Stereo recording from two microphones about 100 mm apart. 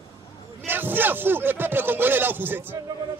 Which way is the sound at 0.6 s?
20° right (ahead or behind).